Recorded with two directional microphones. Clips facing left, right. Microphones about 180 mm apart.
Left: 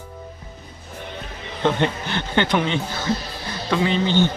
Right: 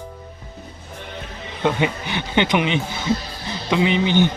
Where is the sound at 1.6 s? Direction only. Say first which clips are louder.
Even; 10° right (ahead or behind).